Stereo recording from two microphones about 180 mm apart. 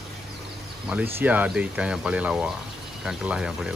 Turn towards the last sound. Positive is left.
turn(degrees=-5)  # may be behind; listen again after turning